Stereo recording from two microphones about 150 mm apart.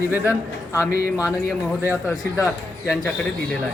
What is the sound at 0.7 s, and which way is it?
Speech, 20° left (ahead or behind).